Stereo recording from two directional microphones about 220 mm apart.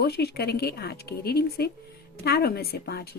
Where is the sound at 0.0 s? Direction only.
45° left (ahead or behind).